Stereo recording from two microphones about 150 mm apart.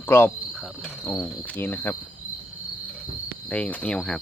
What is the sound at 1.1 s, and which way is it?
Cricket, centre (ahead or behind).